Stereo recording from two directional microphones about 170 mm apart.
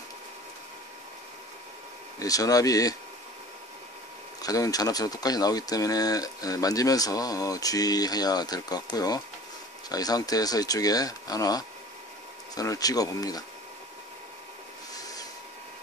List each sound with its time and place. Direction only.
2.1 s speech: 20° left (ahead or behind)
4.4 s speech: 20° left (ahead or behind)